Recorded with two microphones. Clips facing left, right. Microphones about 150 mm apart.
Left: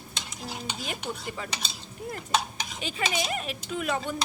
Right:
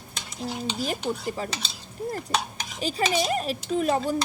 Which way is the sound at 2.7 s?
40° right (ahead or behind).